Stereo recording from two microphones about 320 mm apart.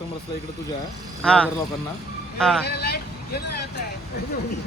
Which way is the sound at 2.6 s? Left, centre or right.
Left.